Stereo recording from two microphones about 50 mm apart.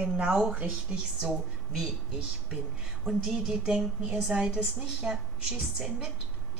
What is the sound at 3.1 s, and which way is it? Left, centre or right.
A woman's voice, centre.